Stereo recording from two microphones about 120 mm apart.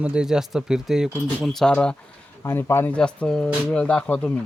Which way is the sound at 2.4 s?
20° left (ahead or behind).